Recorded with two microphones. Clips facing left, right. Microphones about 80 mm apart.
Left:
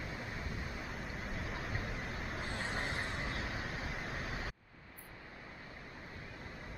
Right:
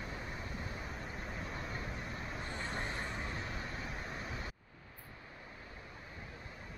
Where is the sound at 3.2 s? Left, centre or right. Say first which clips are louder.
Left 1 dB; left.